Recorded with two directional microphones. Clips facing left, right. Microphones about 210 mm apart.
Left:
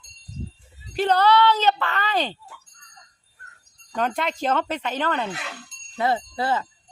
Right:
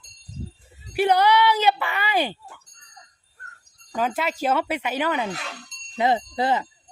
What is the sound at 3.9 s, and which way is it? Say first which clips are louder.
Speech: even; 5° right (ahead or behind).